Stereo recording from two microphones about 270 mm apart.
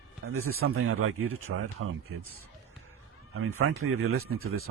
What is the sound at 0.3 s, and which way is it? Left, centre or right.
Speech, right.